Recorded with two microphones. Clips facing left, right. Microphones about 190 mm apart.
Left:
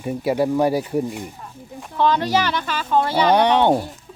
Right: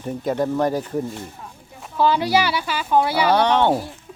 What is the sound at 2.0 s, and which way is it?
Speech, 10° right (ahead or behind).